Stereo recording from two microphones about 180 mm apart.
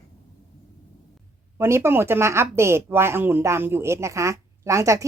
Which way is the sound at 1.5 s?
15° right (ahead or behind).